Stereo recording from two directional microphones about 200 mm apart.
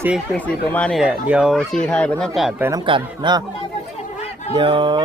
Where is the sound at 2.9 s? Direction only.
25° right (ahead or behind).